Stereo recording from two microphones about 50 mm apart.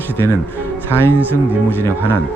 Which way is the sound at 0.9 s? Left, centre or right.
Left.